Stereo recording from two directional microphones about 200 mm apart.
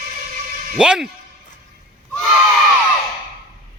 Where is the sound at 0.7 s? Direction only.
5° right (ahead or behind).